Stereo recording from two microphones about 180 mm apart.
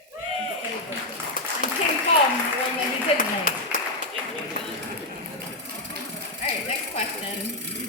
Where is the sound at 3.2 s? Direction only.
50° left (ahead or behind).